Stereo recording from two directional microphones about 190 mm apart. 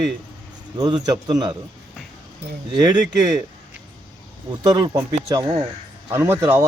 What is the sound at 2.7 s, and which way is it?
Speech, 20° right (ahead or behind).